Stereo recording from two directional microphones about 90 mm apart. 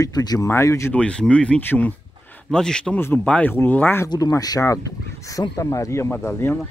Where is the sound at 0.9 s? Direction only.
10° left (ahead or behind).